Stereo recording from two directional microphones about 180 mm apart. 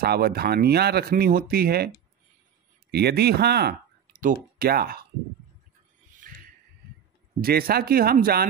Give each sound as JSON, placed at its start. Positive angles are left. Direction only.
{"t": 0.0, "sound": "speech", "side_deg": -60}
{"t": 2.9, "sound": "speech", "side_deg": -60}
{"t": 6.1, "sound": "a sound", "side_deg": -50}
{"t": 7.4, "sound": "speech", "side_deg": -60}